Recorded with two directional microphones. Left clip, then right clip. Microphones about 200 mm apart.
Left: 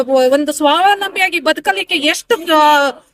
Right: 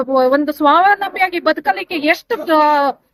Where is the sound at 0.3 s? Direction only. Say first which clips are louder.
Even; 30° left (ahead or behind).